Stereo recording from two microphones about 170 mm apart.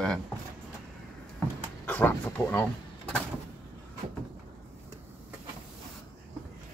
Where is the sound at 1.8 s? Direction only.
10° left (ahead or behind).